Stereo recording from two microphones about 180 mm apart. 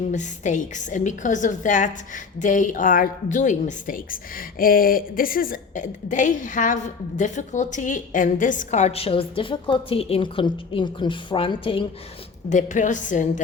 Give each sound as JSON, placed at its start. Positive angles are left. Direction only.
{"t": 0.1, "sound": "a woman's voice", "side_deg": 45}
{"t": 12.5, "sound": "a woman's voice", "side_deg": 45}